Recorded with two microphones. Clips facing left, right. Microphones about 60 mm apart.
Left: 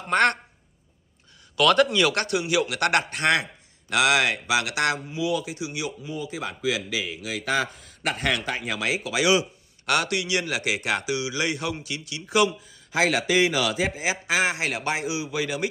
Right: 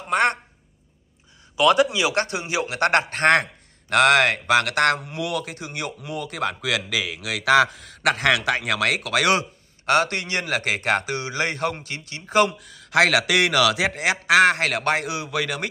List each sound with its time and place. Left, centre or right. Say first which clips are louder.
0.1 s a man's voice: even; centre
1.6 s a man's voice: right 1 dB; centre
2.1 s a man's voice: even; right
5.9 s speech: right 3 dB; right
9.8 s speech: right 4 dB; right
12.4 s speech: right 1 dB; right